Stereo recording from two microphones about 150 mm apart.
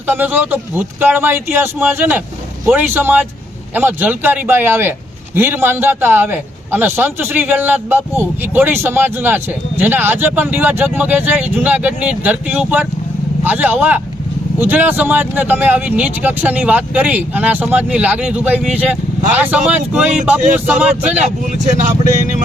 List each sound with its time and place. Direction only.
0.1 s a man's voice: 10° right (ahead or behind)
21.2 s speech: 55° right (ahead or behind)